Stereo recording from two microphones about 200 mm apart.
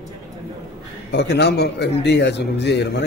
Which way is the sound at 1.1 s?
60° left (ahead or behind).